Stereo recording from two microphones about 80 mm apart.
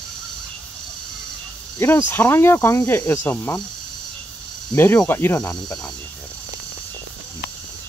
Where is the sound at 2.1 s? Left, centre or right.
Left.